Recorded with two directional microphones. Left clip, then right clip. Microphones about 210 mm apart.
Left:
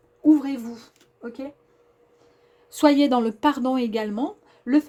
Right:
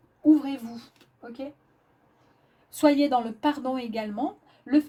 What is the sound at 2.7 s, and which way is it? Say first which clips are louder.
A woman's voice: left 3 dB; 45° left (ahead or behind).